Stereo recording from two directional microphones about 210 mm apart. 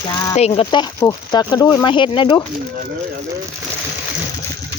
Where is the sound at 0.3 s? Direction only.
30° left (ahead or behind).